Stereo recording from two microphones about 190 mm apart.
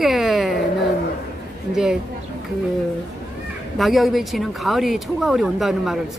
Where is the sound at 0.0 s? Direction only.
Centre (ahead or behind).